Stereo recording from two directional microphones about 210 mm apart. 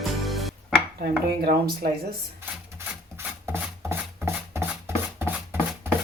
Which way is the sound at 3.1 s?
10° right (ahead or behind).